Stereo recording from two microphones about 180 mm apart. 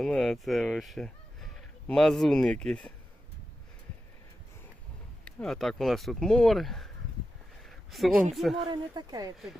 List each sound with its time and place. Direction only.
0.0 s speech: centre (ahead or behind)
5.2 s speech: 5° left (ahead or behind)
8.7 s speech: 20° right (ahead or behind)